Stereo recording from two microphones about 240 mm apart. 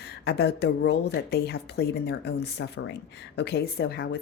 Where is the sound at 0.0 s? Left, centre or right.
Left.